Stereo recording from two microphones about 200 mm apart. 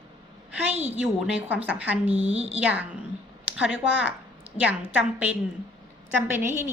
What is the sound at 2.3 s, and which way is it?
Speech, 30° right (ahead or behind).